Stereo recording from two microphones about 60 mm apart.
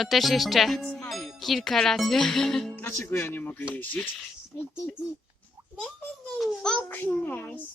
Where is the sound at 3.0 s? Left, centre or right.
Left.